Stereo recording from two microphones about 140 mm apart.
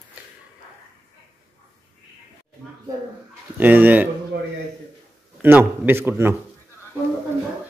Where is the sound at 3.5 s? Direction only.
15° right (ahead or behind).